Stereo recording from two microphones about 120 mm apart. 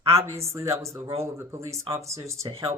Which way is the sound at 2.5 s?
55° right (ahead or behind).